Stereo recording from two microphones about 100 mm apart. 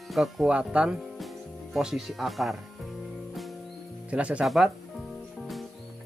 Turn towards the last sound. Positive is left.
turn(degrees=0)  # may be behind; listen again after turning